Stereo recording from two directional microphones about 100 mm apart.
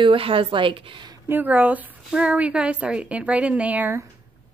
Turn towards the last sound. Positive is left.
turn(degrees=-15)  # may be behind; listen again after turning